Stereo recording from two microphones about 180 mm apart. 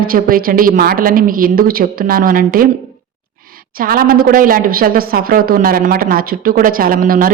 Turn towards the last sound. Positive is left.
turn(degrees=-50)  # may be behind; listen again after turning